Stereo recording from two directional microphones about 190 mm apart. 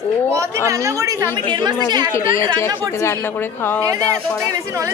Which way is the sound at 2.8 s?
15° left (ahead or behind).